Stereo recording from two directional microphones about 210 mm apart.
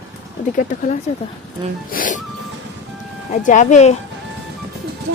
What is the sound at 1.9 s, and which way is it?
Music, 40° left (ahead or behind).